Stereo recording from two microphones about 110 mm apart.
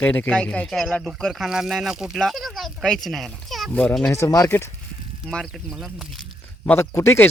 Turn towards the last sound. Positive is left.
turn(degrees=25)  # may be behind; listen again after turning